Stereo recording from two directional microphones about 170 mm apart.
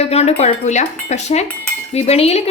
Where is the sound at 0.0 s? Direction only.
40° left (ahead or behind).